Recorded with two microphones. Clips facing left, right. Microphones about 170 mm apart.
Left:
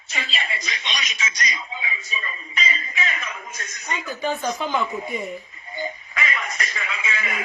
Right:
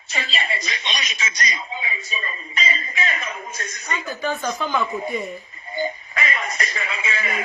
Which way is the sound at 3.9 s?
15° left (ahead or behind).